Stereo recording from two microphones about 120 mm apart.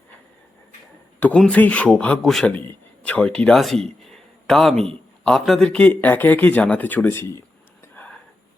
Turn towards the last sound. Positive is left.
turn(degrees=20)  # may be behind; listen again after turning